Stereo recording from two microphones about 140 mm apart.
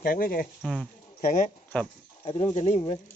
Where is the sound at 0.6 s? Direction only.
Centre (ahead or behind).